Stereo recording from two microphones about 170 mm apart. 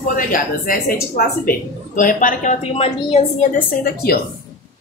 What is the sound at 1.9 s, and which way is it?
A woman's voice, 50° left (ahead or behind).